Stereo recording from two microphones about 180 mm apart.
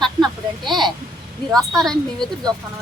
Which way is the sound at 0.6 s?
Centre (ahead or behind).